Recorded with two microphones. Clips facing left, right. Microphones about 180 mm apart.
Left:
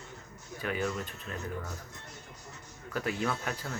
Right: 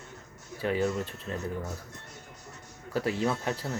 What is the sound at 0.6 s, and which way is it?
Speech, 30° right (ahead or behind).